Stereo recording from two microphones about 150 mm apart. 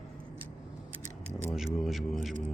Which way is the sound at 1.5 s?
Centre (ahead or behind).